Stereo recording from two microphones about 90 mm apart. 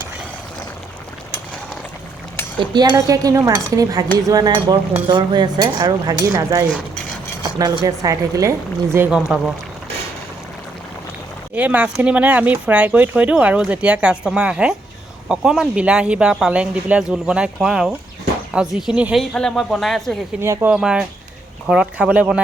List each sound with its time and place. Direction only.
2.6 s speech: 55° right (ahead or behind)
5.0 s speech: 55° right (ahead or behind); by 9.0 s 30° right (ahead or behind)
9.3 s speech: centre (ahead or behind)
11.5 s speech: 15° right (ahead or behind)
19.3 s speech: 10° left (ahead or behind)
20.4 s speech: 30° right (ahead or behind)
20.7 s speech: 10° right (ahead or behind)